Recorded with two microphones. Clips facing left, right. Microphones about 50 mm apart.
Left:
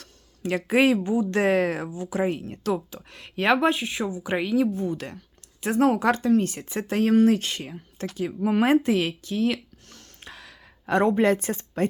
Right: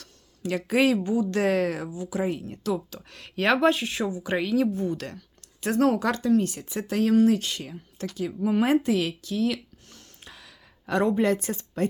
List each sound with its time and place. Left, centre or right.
0.0 s speech: left
2.9 s speech: centre
6.0 s speech: left
8.4 s speech: left
9.8 s gasp: left
10.8 s speech: left